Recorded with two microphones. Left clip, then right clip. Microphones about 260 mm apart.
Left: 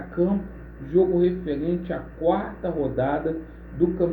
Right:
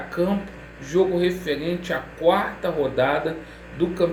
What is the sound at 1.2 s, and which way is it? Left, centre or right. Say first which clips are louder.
Speech: even; centre.